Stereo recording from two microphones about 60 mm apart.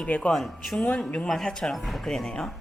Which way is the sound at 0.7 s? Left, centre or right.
Centre.